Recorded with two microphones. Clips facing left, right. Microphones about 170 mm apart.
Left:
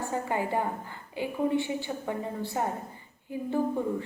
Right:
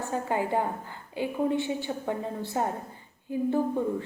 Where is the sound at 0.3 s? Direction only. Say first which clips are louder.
Right 3 dB; 20° right (ahead or behind).